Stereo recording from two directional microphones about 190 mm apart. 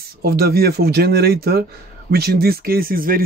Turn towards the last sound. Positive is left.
turn(degrees=-50)  # may be behind; listen again after turning